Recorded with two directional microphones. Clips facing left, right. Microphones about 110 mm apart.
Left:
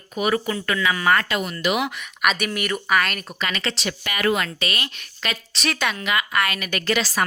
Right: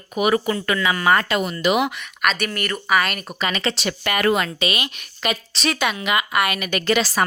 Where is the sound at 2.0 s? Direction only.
5° left (ahead or behind).